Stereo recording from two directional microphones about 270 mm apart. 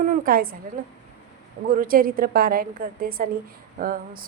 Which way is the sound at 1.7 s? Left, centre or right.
Right.